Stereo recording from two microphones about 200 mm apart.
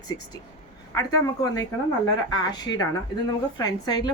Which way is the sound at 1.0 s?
15° left (ahead or behind).